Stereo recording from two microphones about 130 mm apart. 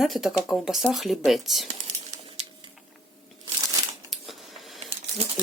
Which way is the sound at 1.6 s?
60° right (ahead or behind).